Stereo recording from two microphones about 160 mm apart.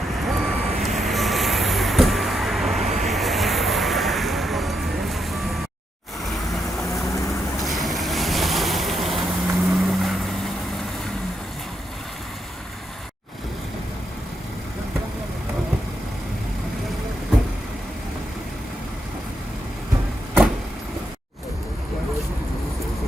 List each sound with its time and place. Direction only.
0.1 s vehicle: centre (ahead or behind)
6.9 s vehicle: 20° left (ahead or behind)
7.6 s vehicle: centre (ahead or behind)